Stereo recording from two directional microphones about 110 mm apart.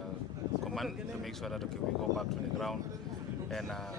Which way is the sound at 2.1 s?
Centre (ahead or behind).